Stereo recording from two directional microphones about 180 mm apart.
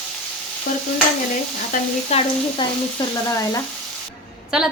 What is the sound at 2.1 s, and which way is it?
Sizzle, 35° left (ahead or behind).